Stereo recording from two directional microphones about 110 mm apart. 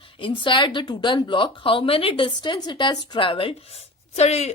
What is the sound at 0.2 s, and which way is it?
A woman's voice, 50° left (ahead or behind).